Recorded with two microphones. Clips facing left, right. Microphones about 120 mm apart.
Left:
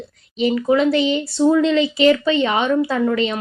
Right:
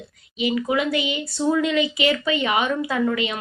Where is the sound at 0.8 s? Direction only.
35° left (ahead or behind).